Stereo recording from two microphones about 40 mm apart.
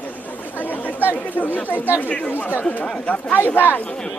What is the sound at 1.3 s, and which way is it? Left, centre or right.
Speech, left.